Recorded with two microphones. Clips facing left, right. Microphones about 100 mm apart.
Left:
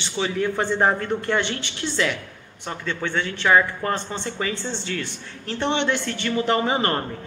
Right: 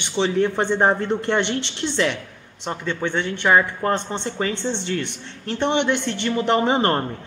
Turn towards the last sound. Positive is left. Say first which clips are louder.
# right 3 dB
turn(degrees=-25)  # may be behind; listen again after turning